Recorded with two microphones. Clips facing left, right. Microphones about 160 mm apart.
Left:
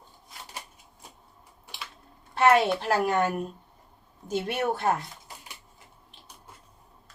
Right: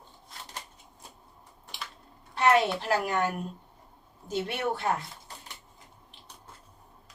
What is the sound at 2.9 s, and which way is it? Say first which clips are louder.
Speech: left 3 dB; 50° left (ahead or behind).